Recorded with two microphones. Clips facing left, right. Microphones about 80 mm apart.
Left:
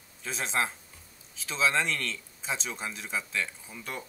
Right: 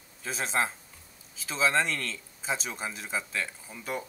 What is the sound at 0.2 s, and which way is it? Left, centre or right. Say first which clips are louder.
Speech: right 1 dB; centre.